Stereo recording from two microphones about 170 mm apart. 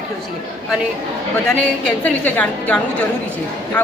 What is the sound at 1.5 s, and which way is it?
A woman's voice, 5° left (ahead or behind).